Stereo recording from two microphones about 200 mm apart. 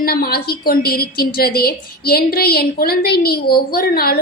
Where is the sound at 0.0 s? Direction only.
50° left (ahead or behind).